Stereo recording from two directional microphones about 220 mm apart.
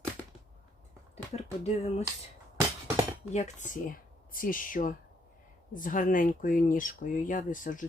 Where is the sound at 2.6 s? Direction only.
15° right (ahead or behind).